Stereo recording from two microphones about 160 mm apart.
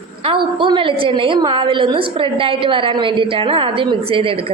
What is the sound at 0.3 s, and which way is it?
A woman's voice, 30° right (ahead or behind).